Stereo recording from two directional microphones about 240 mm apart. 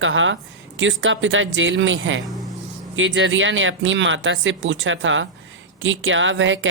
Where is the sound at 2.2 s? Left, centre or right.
Centre.